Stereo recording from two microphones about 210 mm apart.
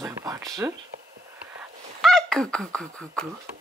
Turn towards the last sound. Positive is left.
turn(degrees=5)  # may be behind; listen again after turning